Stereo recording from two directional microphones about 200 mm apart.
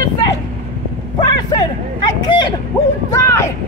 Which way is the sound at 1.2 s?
20° left (ahead or behind).